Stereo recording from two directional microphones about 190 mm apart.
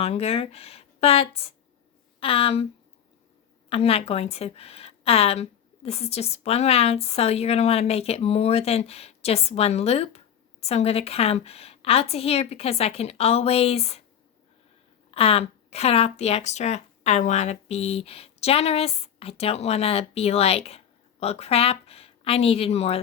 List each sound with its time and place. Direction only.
0.0 s a woman's voice: 35° left (ahead or behind)
3.7 s a woman's voice: 30° left (ahead or behind)
15.1 s speech: 30° left (ahead or behind)